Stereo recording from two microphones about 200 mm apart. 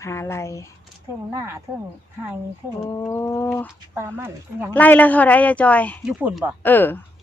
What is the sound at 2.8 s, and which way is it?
Speech, 15° left (ahead or behind).